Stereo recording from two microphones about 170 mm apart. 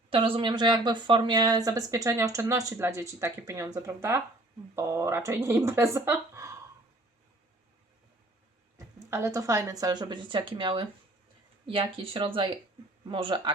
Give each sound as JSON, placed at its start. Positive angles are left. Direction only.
{"t": 0.1, "sound": "speech", "side_deg": -30}
{"t": 9.0, "sound": "speech", "side_deg": -15}